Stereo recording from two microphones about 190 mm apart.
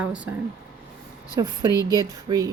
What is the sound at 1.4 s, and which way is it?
Speech, 20° right (ahead or behind).